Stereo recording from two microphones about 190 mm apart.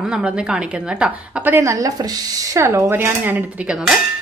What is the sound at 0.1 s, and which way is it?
A woman's voice, 5° right (ahead or behind).